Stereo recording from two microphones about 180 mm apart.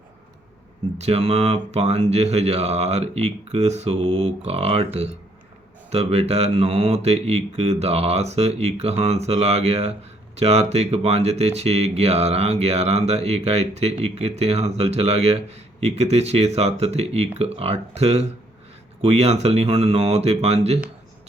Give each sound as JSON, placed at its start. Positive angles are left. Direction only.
{"t": 0.9, "sound": "speech", "side_deg": -35}